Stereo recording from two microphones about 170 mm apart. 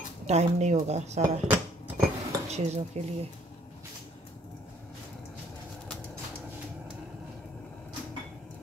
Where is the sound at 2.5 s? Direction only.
40° right (ahead or behind).